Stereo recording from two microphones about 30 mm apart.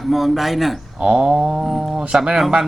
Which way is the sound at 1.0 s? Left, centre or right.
Right.